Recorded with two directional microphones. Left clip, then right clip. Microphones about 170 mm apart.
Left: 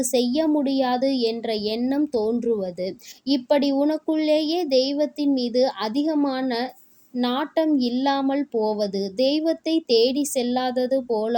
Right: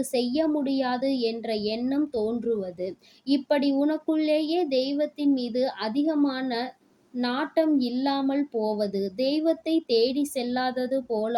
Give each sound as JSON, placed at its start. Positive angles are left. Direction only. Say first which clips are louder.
{"t": 0.0, "sound": "speech", "louder": "left 4 dB", "side_deg": 35}